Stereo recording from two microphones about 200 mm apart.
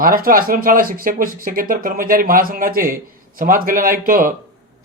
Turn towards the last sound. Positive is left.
turn(degrees=-45)  # may be behind; listen again after turning